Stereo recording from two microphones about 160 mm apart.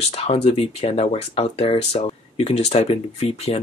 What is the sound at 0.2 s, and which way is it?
Speech, 40° left (ahead or behind).